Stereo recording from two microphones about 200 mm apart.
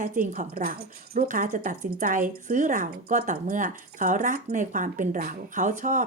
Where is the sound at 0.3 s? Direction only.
45° right (ahead or behind).